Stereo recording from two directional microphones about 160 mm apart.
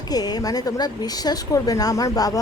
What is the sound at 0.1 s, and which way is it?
Speech, 25° left (ahead or behind).